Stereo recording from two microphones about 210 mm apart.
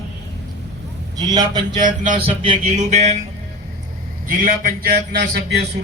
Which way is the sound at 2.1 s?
25° right (ahead or behind).